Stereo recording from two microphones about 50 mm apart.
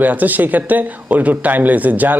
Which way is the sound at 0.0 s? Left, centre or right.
Right.